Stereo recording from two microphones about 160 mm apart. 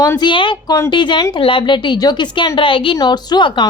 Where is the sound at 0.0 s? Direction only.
25° left (ahead or behind).